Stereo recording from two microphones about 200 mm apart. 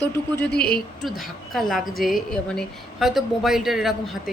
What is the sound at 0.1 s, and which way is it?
Speech, 10° left (ahead or behind).